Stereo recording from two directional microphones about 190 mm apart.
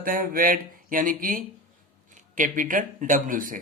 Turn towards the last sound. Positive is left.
turn(degrees=-45)  # may be behind; listen again after turning